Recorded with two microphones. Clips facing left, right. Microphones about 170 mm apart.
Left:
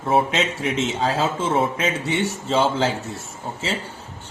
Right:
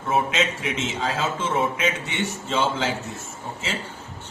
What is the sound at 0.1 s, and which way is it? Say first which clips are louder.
Speech: left 3 dB; 35° left (ahead or behind).